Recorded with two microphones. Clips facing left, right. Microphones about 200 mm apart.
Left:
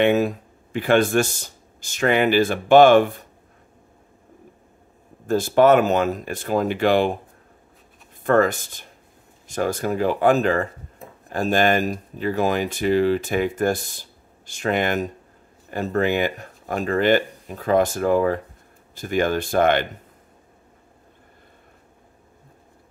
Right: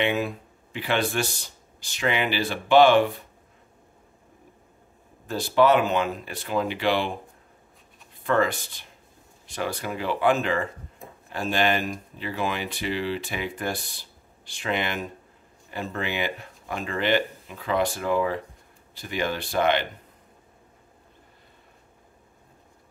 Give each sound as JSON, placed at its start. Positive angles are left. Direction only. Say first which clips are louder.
{"t": 0.0, "sound": "speech", "louder": "left 7 dB", "side_deg": 45}
{"t": 5.2, "sound": "speech", "louder": "left 5 dB", "side_deg": 50}
{"t": 8.2, "sound": "speech", "louder": "left 5 dB", "side_deg": 45}